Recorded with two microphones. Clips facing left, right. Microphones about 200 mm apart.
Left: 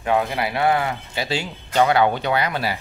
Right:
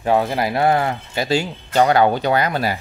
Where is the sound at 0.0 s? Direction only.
35° right (ahead or behind).